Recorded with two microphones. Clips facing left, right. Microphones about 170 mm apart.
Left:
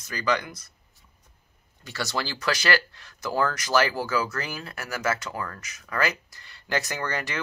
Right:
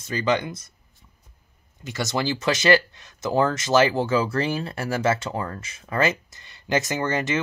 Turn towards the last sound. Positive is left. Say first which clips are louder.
# right 6 dB
turn(degrees=-20)  # may be behind; listen again after turning